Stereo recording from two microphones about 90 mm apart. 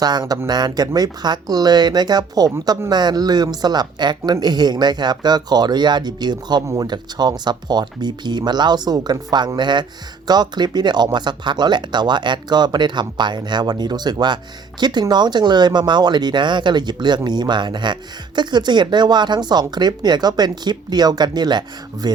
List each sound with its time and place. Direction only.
0.0 s speech: 50° right (ahead or behind)